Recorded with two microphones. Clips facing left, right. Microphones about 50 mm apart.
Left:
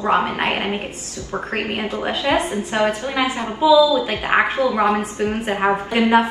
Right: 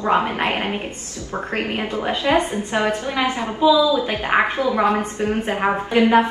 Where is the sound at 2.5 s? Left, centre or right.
Left.